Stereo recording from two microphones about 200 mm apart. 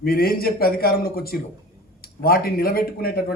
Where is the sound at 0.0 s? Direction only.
50° left (ahead or behind).